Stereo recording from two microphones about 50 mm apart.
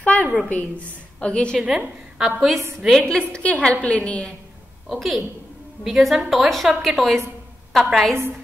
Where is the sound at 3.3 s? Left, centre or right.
Left.